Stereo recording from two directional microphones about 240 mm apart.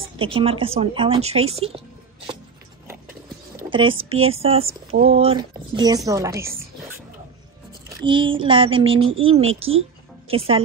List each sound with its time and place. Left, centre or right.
0.2 s a woman's voice: right
3.7 s a woman's voice: right
8.0 s a woman's voice: right